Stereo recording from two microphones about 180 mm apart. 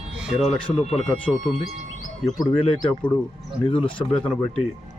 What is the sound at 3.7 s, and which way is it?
Speech, 30° left (ahead or behind).